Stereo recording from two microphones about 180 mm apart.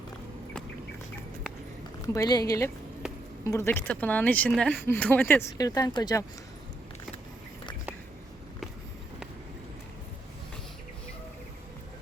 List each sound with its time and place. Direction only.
2.1 s a woman's voice: 20° left (ahead or behind)